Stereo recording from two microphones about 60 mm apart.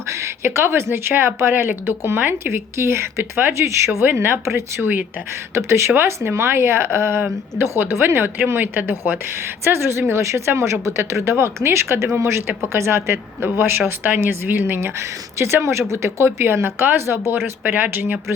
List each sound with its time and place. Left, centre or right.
0.1 s speech: right
9.6 s speech: right
15.4 s speech: right
17.6 s speech: right